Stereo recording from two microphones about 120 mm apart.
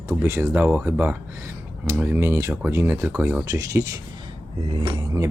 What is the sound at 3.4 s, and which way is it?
Speech, 30° right (ahead or behind).